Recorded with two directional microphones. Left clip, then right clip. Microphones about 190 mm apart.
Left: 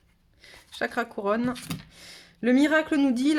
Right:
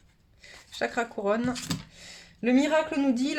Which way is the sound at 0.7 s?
30° left (ahead or behind).